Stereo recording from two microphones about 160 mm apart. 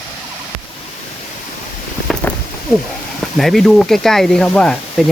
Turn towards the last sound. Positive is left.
turn(degrees=5)  # may be behind; listen again after turning